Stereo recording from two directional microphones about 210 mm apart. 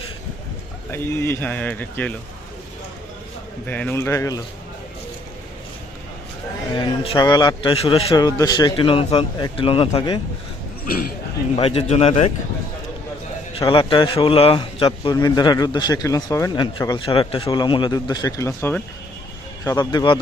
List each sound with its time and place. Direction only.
0.9 s speech: 10° left (ahead or behind)
3.7 s speech: 5° left (ahead or behind)
6.7 s a man's voice: 25° left (ahead or behind)
10.8 s speech: 45° left (ahead or behind)
11.5 s a man's voice: 30° left (ahead or behind)
13.6 s a man's voice: 25° left (ahead or behind)